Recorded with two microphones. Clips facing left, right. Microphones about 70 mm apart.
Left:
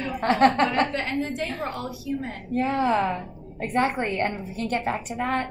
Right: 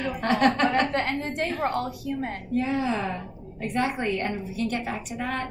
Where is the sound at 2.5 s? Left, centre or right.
Left.